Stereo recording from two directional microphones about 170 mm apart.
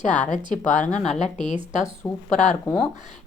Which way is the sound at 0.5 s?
45° left (ahead or behind).